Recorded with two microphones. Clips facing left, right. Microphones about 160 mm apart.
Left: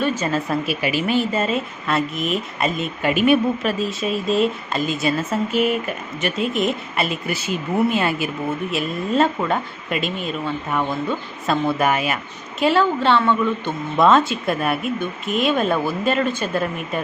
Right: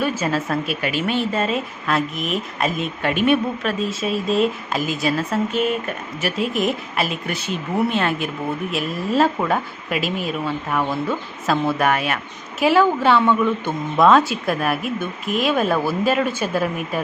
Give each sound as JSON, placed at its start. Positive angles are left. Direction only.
{"t": 0.0, "sound": "a woman's voice", "side_deg": -10}
{"t": 11.5, "sound": "a woman's voice", "side_deg": 5}
{"t": 12.6, "sound": "a woman's voice", "side_deg": -10}